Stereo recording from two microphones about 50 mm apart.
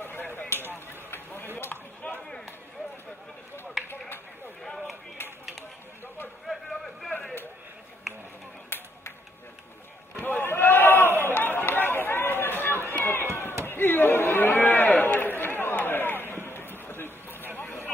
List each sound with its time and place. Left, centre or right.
0.0 s a sound: left
1.1 s chop: left
2.0 s run: left
4.6 s run: centre
6.4 s a sound: centre
8.6 s clapping: left
10.4 s chatter: left
12.9 s run: left
13.7 s a sound: left
17.6 s vehicle: left